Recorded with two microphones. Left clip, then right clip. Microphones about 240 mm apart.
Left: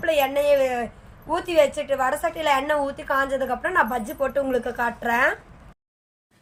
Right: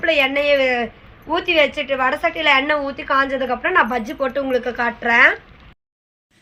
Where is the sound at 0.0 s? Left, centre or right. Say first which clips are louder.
Right 4 dB; left.